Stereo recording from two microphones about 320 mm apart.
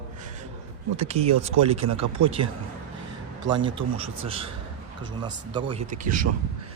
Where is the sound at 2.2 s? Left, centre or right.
Centre.